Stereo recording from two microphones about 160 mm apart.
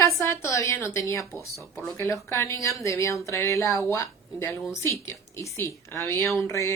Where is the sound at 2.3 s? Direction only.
20° left (ahead or behind).